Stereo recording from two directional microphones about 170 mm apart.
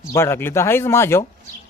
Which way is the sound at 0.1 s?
15° left (ahead or behind).